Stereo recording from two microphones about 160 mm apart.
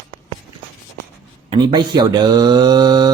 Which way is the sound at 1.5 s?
25° right (ahead or behind).